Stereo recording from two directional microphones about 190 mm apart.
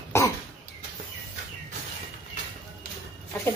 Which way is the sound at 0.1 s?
15° left (ahead or behind).